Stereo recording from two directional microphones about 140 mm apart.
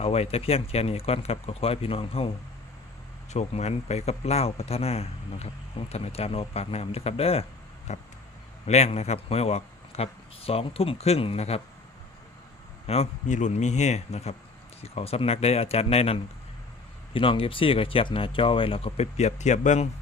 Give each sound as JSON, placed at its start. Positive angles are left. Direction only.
{"t": 0.0, "sound": "speech", "side_deg": 45}
{"t": 3.3, "sound": "speech", "side_deg": 50}
{"t": 7.9, "sound": "a sound", "side_deg": 55}
{"t": 8.6, "sound": "speech", "side_deg": 50}
{"t": 12.9, "sound": "speech", "side_deg": 55}